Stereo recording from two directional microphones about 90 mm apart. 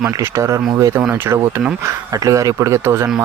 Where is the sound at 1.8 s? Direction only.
40° right (ahead or behind).